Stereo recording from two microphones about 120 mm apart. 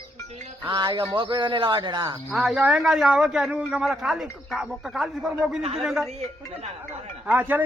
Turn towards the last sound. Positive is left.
turn(degrees=-15)  # may be behind; listen again after turning